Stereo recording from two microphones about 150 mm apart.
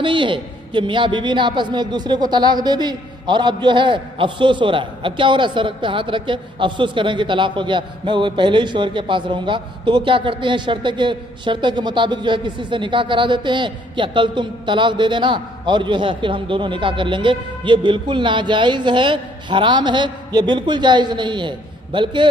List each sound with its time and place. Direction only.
0.0 s a man's voice: 35° right (ahead or behind)